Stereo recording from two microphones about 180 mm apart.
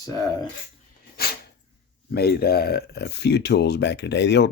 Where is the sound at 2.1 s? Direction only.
60° left (ahead or behind).